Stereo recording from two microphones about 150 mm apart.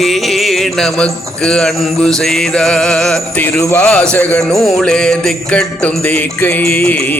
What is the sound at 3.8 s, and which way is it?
Music, 5° left (ahead or behind).